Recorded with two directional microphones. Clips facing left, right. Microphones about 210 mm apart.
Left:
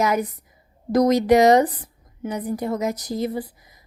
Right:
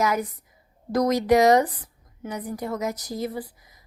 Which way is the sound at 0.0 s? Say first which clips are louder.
Left 3 dB; 20° left (ahead or behind).